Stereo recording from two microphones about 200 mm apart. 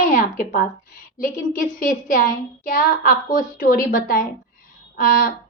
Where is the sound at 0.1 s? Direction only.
40° left (ahead or behind).